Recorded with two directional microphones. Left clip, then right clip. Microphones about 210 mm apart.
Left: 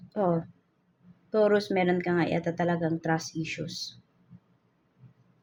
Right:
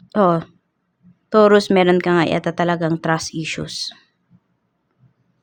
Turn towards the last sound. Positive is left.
turn(degrees=-35)  # may be behind; listen again after turning